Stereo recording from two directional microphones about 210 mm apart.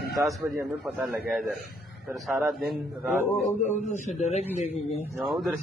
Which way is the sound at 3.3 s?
10° left (ahead or behind).